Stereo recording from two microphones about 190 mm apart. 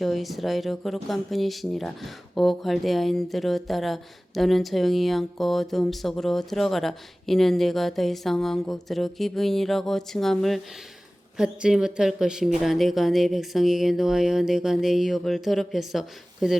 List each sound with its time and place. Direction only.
0.0 s speech: centre (ahead or behind)